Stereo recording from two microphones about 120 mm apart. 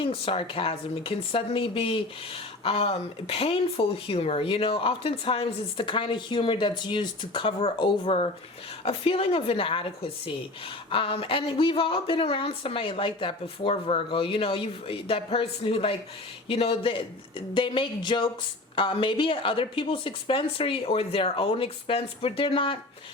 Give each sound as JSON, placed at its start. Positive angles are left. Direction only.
{"t": 0.0, "sound": "speech", "side_deg": 50}